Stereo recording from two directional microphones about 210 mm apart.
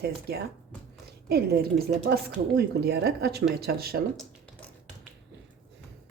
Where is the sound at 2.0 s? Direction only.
50° right (ahead or behind).